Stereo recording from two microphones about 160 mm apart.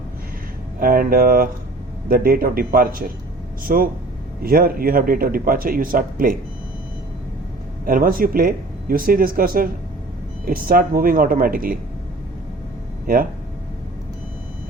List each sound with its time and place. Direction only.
0.8 s a man's voice: 65° right (ahead or behind)
7.9 s a man's voice: 60° right (ahead or behind)